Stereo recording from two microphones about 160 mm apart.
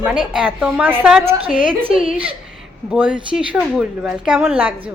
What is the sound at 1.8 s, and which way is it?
Speech, 35° right (ahead or behind).